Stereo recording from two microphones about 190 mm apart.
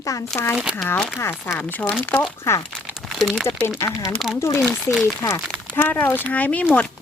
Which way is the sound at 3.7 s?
20° left (ahead or behind).